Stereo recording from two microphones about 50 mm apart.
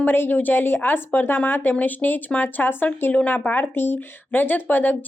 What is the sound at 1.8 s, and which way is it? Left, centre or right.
A woman's voice, left.